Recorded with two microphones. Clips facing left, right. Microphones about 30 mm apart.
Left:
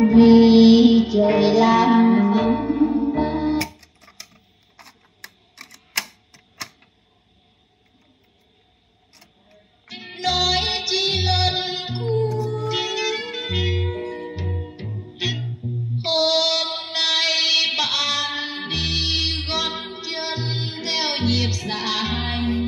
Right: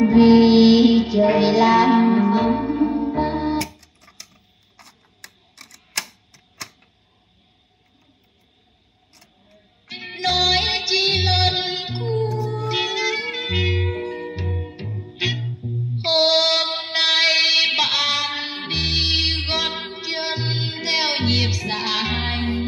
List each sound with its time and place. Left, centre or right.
0.0 s music: centre
3.5 s music: centre
9.1 s camera: centre
9.8 s music: centre
15.3 s music: centre
16.0 s child singing: right